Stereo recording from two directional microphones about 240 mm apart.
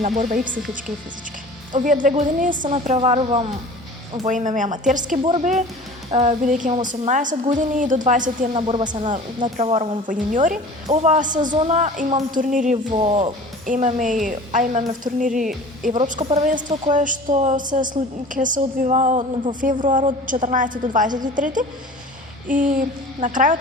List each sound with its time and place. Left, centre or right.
0.0 s a woman's voice: right
1.7 s a woman's voice: right
9.0 s a woman's voice: right
19.9 s a woman's voice: right